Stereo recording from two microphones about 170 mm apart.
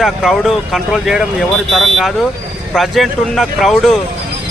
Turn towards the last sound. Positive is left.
turn(degrees=5)  # may be behind; listen again after turning